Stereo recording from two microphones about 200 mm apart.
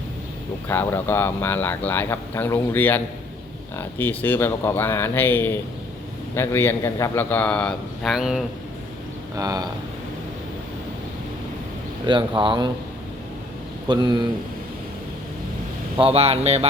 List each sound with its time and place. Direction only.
0.7 s speech: 10° left (ahead or behind)
9.3 s speech: 20° right (ahead or behind)
12.0 s speech: 25° right (ahead or behind)
13.8 s speech: 20° right (ahead or behind)
16.0 s speech: 30° right (ahead or behind)